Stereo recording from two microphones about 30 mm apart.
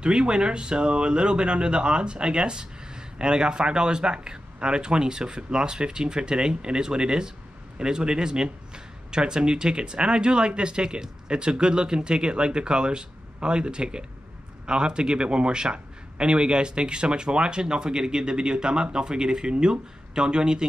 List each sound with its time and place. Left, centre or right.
0.0 s speech: right